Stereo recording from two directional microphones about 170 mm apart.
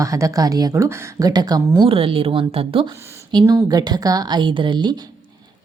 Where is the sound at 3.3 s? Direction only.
20° right (ahead or behind).